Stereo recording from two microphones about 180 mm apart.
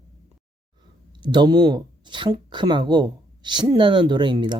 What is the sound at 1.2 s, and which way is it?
Speech, 25° right (ahead or behind).